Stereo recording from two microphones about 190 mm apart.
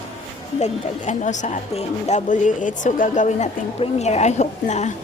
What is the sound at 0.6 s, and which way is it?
Speech, 40° left (ahead or behind).